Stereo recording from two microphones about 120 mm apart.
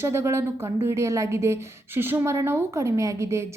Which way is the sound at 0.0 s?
20° right (ahead or behind).